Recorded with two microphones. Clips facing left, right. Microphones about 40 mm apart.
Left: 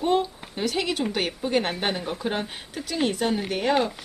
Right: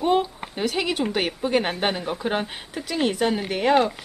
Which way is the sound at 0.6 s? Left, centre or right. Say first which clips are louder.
Right 2 dB; centre.